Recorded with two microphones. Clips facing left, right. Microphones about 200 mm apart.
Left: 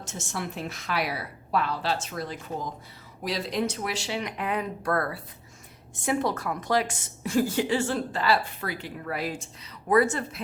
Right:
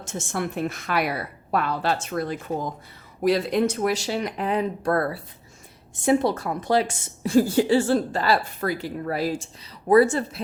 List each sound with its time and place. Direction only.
0.0 s a woman's voice: 55° right (ahead or behind); by 10.4 s 30° right (ahead or behind)